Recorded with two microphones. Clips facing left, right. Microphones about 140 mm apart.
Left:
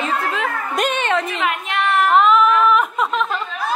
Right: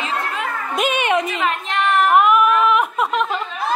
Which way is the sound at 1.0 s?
15° right (ahead or behind).